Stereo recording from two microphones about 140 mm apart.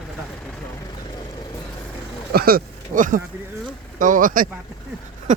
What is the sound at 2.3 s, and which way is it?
Speech, 90° right.